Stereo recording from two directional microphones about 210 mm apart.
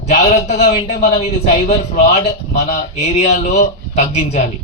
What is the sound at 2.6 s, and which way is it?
A man's voice, 30° left (ahead or behind).